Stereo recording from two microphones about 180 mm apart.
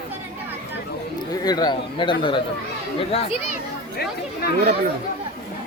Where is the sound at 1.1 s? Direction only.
20° left (ahead or behind).